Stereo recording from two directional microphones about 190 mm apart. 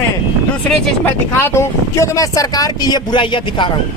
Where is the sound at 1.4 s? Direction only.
15° left (ahead or behind).